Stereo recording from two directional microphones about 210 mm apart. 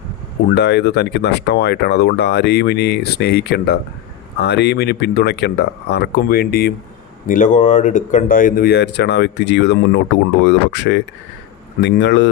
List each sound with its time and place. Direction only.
0.5 s speech: 55° left (ahead or behind)